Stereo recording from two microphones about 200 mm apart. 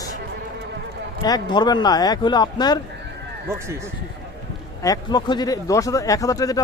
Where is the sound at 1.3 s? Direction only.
20° left (ahead or behind).